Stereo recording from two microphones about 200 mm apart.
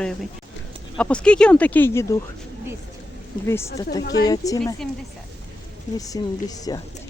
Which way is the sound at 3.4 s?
15° left (ahead or behind).